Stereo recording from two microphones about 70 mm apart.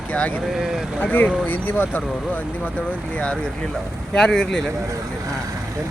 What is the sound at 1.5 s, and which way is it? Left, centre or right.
Speech, left.